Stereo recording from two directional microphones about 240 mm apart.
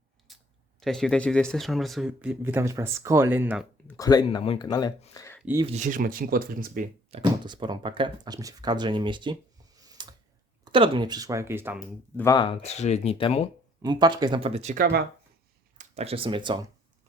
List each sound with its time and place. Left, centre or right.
0.3 s a sound: centre
0.8 s speech: centre
3.8 s speech: centre
5.4 s speech: centre
5.6 s speech: right
7.2 s speech: centre
12.1 s speech: centre
13.8 s speech: centre